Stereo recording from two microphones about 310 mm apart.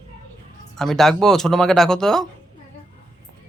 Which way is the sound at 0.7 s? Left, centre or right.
Centre.